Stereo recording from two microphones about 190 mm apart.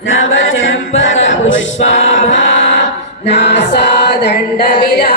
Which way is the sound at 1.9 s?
35° left (ahead or behind).